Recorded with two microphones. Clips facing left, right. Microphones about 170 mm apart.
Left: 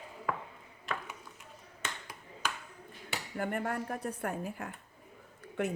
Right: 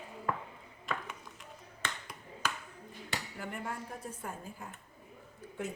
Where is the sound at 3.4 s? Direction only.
55° left (ahead or behind).